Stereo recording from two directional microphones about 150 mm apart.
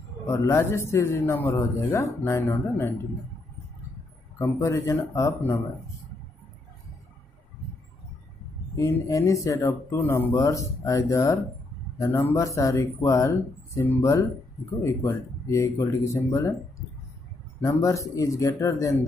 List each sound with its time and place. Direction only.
0.3 s a man's voice: 20° left (ahead or behind)
4.4 s speech: 20° left (ahead or behind)
8.7 s speech: 20° left (ahead or behind)